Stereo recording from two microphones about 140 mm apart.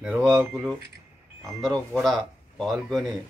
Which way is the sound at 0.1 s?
Centre (ahead or behind).